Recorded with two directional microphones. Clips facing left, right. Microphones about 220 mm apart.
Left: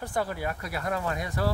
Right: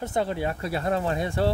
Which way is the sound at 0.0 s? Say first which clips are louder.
Right 4 dB; 25° right (ahead or behind).